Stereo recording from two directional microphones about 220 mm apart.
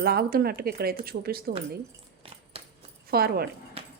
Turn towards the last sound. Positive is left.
turn(degrees=-45)  # may be behind; listen again after turning